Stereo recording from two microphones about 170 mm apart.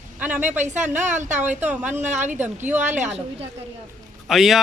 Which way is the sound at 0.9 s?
45° right (ahead or behind).